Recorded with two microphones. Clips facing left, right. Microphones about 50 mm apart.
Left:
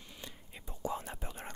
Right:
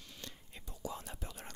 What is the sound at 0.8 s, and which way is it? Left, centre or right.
Speech, left.